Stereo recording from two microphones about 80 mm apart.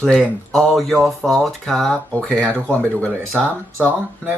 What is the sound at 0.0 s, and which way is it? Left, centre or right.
Speech, centre.